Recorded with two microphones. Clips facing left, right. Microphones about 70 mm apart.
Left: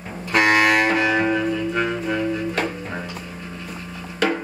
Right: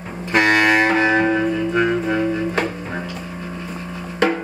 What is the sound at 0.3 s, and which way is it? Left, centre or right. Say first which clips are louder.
Music: right 1 dB; centre.